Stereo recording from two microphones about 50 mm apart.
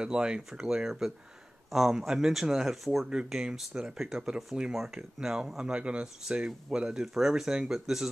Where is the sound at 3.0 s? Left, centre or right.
Centre.